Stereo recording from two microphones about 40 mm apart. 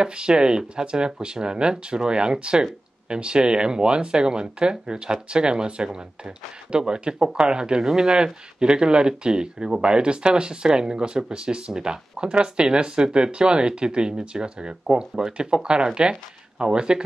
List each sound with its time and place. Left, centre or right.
0.0 s speech: right